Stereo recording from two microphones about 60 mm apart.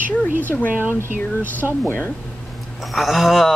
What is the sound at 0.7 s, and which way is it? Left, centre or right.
Speech, right.